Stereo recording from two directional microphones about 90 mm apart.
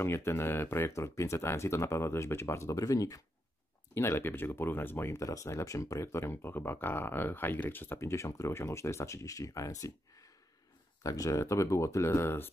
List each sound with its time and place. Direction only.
0.0 s speech: 30° left (ahead or behind)
3.9 s speech: 25° left (ahead or behind)
11.0 s speech: 40° left (ahead or behind)